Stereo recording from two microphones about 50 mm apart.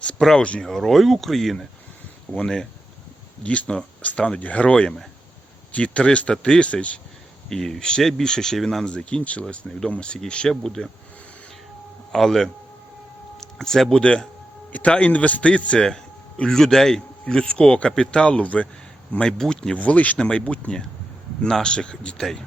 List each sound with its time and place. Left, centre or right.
0.0 s a sound: centre
0.6 s speech: centre
2.3 s speech: left
7.5 s speech: centre
9.6 s speech: left
10.5 s speech: centre
12.1 s speech: centre
13.4 s a sound: centre
13.9 s speech: centre
16.4 s speech: centre; by 18.7 s left
19.4 s speech: centre
19.7 s speech: left